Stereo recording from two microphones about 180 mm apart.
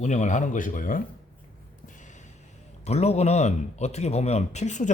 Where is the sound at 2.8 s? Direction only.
35° left (ahead or behind).